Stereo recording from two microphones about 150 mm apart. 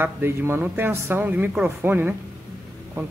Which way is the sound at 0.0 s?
15° right (ahead or behind).